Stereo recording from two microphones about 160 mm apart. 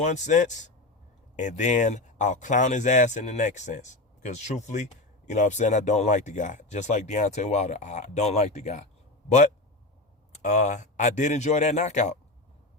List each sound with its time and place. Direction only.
0.0 s speech: 50° left (ahead or behind)
10.3 s speech: 50° left (ahead or behind)